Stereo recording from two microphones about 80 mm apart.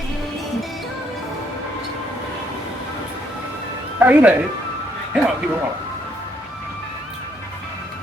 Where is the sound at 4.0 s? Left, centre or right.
Right.